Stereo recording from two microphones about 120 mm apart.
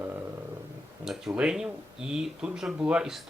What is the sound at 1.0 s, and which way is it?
Speech, 5° right (ahead or behind).